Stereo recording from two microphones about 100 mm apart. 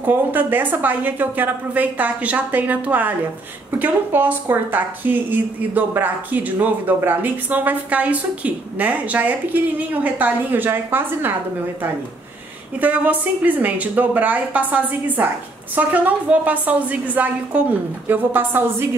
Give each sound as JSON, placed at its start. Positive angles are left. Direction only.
{"t": 0.0, "sound": "a woman's voice", "side_deg": -20}
{"t": 12.7, "sound": "a woman's voice", "side_deg": -15}